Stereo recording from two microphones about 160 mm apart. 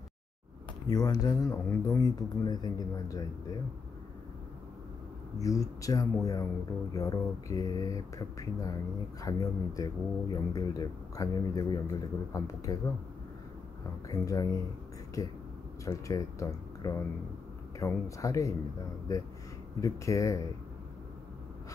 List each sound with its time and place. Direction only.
0.8 s speech: 20° left (ahead or behind)
5.4 s speech: 20° left (ahead or behind)
14.0 s speech: 20° left (ahead or behind)